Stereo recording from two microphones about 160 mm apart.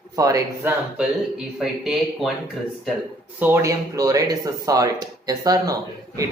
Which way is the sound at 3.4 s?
15° right (ahead or behind).